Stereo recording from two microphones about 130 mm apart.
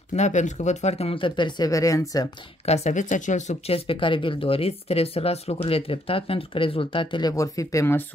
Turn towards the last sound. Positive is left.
turn(degrees=25)  # may be behind; listen again after turning